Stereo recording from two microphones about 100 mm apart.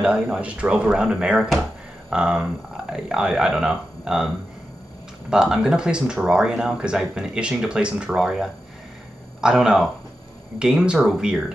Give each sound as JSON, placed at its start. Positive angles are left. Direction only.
{"t": 0.0, "sound": "speech", "side_deg": -10}
{"t": 1.5, "sound": "a sound", "side_deg": -5}
{"t": 2.9, "sound": "speech", "side_deg": -10}
{"t": 5.3, "sound": "speech", "side_deg": -5}